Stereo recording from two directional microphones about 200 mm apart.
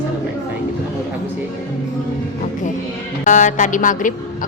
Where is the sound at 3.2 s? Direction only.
40° left (ahead or behind).